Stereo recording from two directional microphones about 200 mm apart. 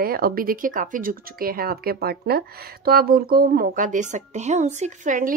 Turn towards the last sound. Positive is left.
turn(degrees=-40)  # may be behind; listen again after turning